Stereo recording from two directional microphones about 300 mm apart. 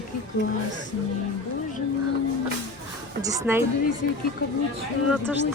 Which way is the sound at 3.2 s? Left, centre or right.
Centre.